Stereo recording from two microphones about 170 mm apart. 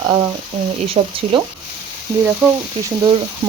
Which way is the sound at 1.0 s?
35° right (ahead or behind).